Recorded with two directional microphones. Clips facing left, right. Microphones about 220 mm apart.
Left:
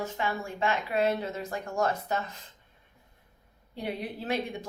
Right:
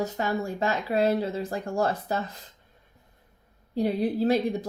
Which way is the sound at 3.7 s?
35° right (ahead or behind).